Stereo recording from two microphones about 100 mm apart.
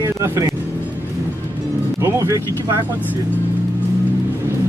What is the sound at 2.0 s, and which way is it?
Music, 30° right (ahead or behind).